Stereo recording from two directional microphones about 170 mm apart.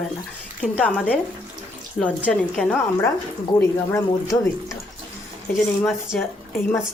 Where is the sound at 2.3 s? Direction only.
5° left (ahead or behind).